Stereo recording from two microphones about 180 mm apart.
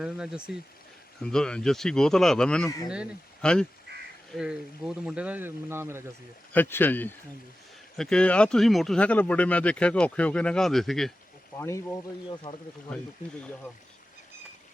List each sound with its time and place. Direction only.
0.0 s speech: 5° right (ahead or behind)
2.6 s speech: 20° left (ahead or behind)
2.9 s speech: 5° right (ahead or behind)
6.5 s speech: 10° left (ahead or behind)
11.5 s speech: 15° left (ahead or behind)